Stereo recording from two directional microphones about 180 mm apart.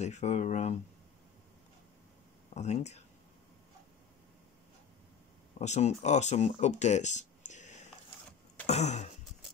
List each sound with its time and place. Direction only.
0.0 s speech: 40° left (ahead or behind)
2.5 s speech: 40° left (ahead or behind)
5.6 s speech: 40° left (ahead or behind)